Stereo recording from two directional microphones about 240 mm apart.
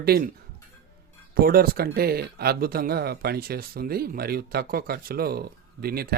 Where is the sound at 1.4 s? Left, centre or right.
Right.